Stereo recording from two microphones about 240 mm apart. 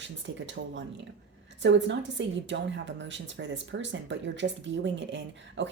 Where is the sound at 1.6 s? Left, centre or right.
Right.